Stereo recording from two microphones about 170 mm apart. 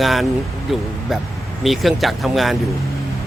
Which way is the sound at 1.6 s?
Centre (ahead or behind).